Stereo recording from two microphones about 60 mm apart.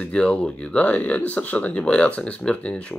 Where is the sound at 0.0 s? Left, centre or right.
Centre.